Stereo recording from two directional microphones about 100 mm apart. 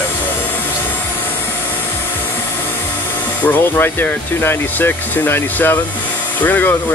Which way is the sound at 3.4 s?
20° left (ahead or behind).